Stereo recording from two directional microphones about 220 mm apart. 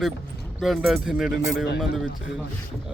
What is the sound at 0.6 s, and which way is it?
Speech, centre (ahead or behind).